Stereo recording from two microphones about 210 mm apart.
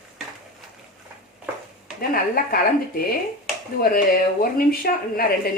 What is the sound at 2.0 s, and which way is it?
Speech, 45° left (ahead or behind).